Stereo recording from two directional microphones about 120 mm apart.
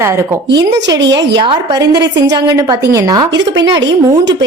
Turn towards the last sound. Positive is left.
turn(degrees=-30)  # may be behind; listen again after turning